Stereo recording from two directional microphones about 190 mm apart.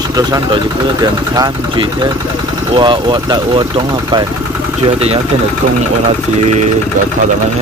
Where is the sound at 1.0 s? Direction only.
20° right (ahead or behind).